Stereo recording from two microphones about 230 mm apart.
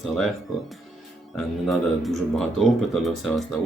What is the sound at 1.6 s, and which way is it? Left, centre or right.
Speech, centre.